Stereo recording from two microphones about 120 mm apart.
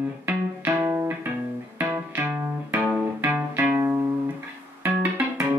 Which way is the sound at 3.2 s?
15° right (ahead or behind).